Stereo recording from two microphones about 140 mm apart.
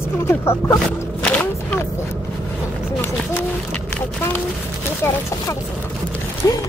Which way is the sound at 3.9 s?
15° left (ahead or behind).